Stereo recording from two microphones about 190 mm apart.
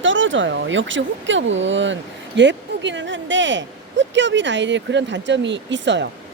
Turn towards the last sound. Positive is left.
turn(degrees=-70)  # may be behind; listen again after turning